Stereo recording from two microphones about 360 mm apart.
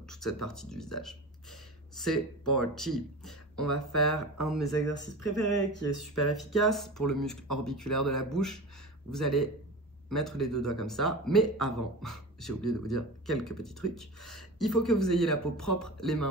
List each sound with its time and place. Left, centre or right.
0.1 s speech: centre
5.9 s speech: centre